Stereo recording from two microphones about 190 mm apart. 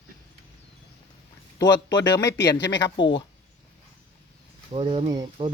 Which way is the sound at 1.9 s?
70° left (ahead or behind).